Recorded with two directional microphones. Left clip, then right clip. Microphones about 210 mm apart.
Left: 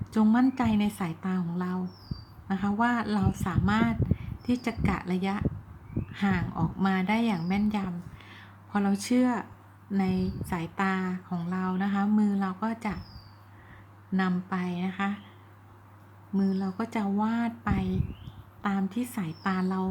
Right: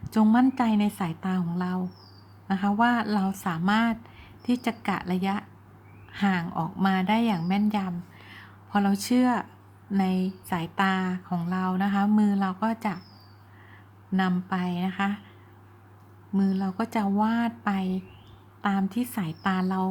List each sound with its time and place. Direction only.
0.1 s a woman's voice: 15° right (ahead or behind)
14.1 s speech: 10° right (ahead or behind)
16.3 s speech: 15° right (ahead or behind)